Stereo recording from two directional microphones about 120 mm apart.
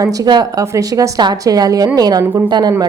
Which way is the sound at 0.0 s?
30° right (ahead or behind).